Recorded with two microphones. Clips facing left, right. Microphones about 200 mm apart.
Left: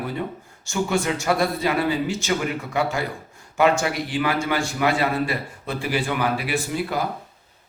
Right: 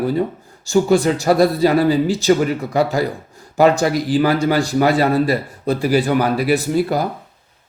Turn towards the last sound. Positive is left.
turn(degrees=-40)  # may be behind; listen again after turning